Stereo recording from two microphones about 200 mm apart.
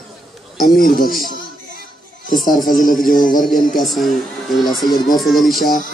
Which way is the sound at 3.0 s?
40° left (ahead or behind).